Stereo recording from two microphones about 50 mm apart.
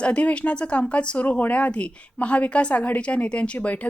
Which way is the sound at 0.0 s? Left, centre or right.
Left.